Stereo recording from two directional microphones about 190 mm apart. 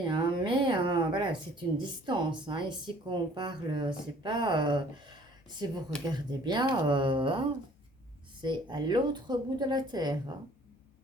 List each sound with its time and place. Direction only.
0.0 s speech: 25° right (ahead or behind)